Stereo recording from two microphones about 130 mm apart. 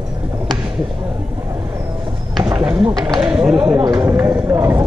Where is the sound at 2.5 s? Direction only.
10° right (ahead or behind).